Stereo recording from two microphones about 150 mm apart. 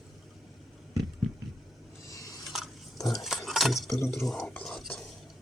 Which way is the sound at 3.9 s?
15° left (ahead or behind).